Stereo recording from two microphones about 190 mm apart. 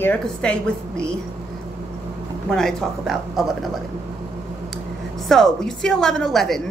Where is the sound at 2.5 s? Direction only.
5° left (ahead or behind).